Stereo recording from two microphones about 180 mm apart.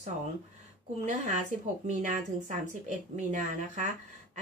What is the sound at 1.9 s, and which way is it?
Speech, 45° right (ahead or behind).